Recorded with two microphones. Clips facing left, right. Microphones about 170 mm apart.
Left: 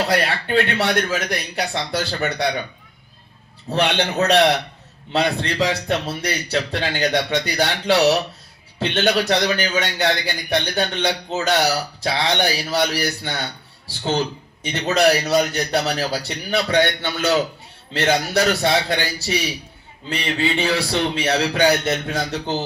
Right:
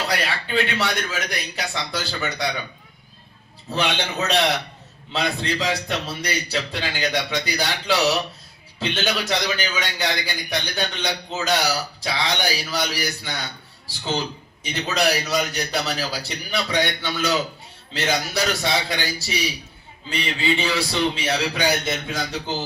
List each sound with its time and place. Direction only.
0.1 s a man's voice: 60° left (ahead or behind)
3.7 s a man's voice: 60° left (ahead or behind)
14.6 s a man's voice: 65° left (ahead or behind)